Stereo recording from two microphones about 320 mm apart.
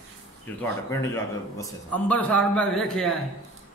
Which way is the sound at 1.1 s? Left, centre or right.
Centre.